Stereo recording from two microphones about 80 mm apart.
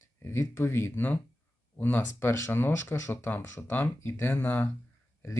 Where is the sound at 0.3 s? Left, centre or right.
Left.